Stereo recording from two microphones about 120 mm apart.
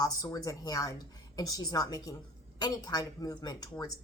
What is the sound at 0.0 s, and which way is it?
A woman's voice, 30° left (ahead or behind).